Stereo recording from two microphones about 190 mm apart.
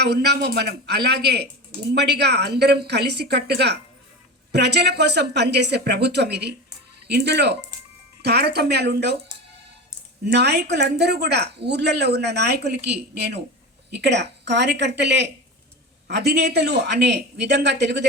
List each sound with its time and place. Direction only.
0.0 s a woman's voice: 60° right (ahead or behind)
10.3 s a woman's voice: 60° right (ahead or behind)